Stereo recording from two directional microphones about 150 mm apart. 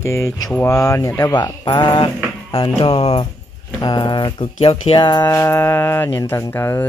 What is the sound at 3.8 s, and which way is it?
Speech, 30° left (ahead or behind).